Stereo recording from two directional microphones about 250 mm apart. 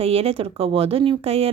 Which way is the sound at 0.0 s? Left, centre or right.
Right.